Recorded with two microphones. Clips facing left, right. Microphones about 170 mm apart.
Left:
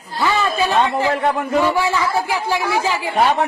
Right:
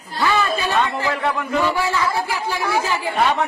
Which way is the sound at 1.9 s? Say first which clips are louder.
Left 2 dB; 15° left (ahead or behind).